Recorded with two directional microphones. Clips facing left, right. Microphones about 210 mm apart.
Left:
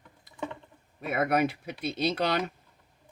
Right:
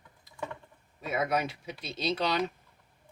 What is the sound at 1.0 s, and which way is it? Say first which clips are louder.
Speech: left 4 dB; 60° left (ahead or behind).